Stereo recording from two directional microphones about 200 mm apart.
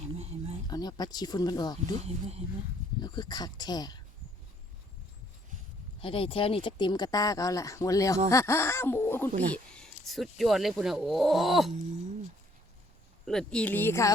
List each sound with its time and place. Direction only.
0.2 s a sound: 30° right (ahead or behind)
0.7 s speech: 20° left (ahead or behind)
2.0 s speech: 30° right (ahead or behind)
3.0 s speech: 20° left (ahead or behind)
6.0 s speech: 25° left (ahead or behind); by 11.7 s centre (ahead or behind)
13.2 s speech: 5° left (ahead or behind)